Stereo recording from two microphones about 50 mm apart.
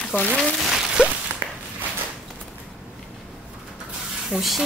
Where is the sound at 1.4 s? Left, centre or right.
Right.